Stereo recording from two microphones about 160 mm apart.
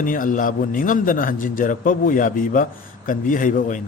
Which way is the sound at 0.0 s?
55° left (ahead or behind).